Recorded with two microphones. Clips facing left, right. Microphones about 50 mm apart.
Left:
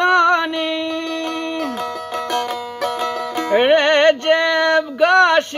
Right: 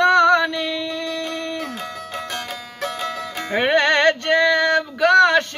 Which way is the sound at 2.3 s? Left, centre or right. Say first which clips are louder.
Left 8 dB; left.